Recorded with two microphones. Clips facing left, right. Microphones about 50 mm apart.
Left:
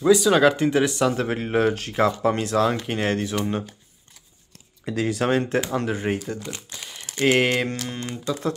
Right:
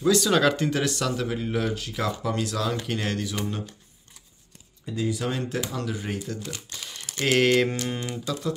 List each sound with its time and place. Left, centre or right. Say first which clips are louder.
0.1 s speech: left 5 dB; centre
1.1 s speech: left 5 dB; left
4.8 s speech: left 3 dB; left
5.2 s speech: left 7 dB; left
6.2 s speech: left 3 dB; left
7.6 s typing: right 1 dB; centre